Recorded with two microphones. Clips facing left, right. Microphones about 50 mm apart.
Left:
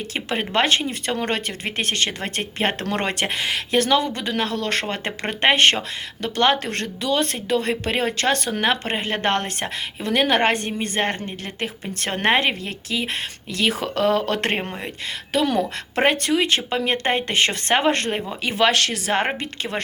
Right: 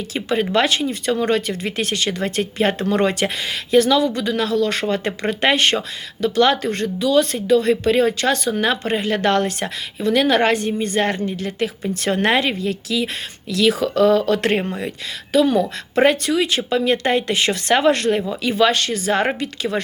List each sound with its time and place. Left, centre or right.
0.1 s speech: left
6.6 s speech: left
7.1 s speech: left
18.4 s speech: left